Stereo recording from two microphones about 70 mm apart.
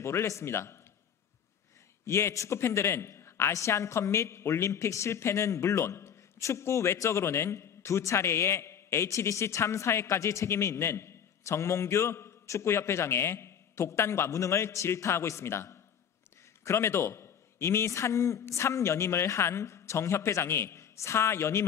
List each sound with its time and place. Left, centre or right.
0.0 s a man's voice: left
2.0 s a man's voice: left